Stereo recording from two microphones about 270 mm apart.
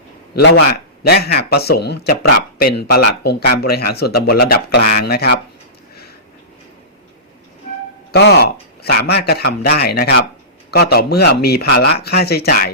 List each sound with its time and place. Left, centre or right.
0.4 s speech: left
8.1 s speech: left